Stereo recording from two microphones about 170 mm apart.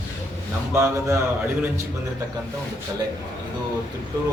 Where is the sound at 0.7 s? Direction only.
15° right (ahead or behind).